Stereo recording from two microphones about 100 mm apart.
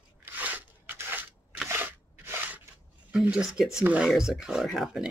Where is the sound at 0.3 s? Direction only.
15° right (ahead or behind).